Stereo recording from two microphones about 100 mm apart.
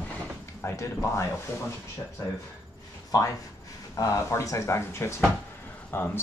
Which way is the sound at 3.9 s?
30° left (ahead or behind).